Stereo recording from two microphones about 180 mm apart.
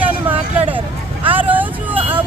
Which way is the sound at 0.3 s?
10° right (ahead or behind).